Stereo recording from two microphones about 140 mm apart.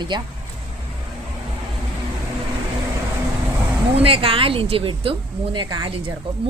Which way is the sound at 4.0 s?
40° right (ahead or behind).